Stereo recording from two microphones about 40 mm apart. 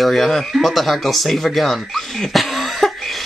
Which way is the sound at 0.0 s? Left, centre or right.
Centre.